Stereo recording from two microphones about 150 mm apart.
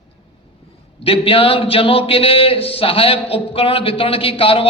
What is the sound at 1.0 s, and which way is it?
Speech, 40° left (ahead or behind).